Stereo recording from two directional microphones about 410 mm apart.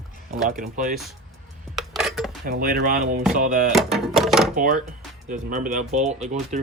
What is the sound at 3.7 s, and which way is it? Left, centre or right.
Speech, centre.